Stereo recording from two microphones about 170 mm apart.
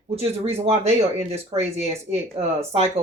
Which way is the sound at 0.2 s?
35° right (ahead or behind).